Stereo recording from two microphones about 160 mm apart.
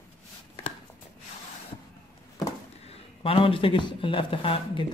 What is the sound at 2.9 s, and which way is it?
A man's voice, 35° left (ahead or behind).